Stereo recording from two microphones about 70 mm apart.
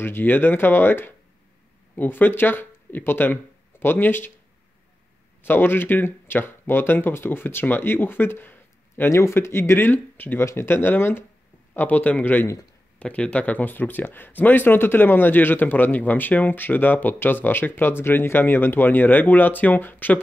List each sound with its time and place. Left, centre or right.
0.0 s speech: left
5.4 s speech: left
9.1 s speech: left
10.4 s speech: left